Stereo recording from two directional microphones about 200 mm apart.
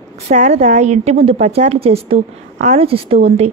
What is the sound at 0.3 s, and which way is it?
A woman's voice, 35° right (ahead or behind).